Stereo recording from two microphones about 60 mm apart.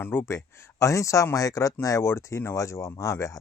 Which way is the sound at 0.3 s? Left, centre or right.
Left.